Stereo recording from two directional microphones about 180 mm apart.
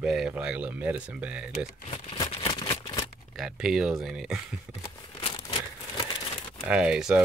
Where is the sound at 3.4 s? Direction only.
Centre (ahead or behind).